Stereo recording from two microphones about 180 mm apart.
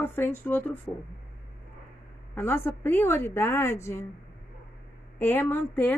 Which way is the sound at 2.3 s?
10° left (ahead or behind).